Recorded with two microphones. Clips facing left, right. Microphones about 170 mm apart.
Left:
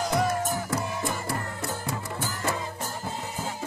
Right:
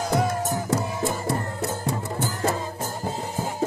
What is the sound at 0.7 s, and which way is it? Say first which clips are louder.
Music: right 4 dB; 25° right (ahead or behind).